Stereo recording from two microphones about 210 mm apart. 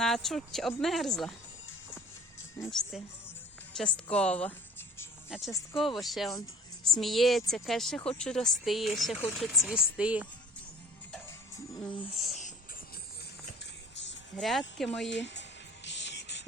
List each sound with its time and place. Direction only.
0.0 s a woman's voice: centre (ahead or behind)
2.6 s a woman's voice: centre (ahead or behind)
5.8 s a woman's voice: centre (ahead or behind)
11.9 s speech: 25° left (ahead or behind)
12.1 s a woman's voice: centre (ahead or behind)
14.3 s a woman's voice: centre (ahead or behind)
15.1 s music: 55° left (ahead or behind)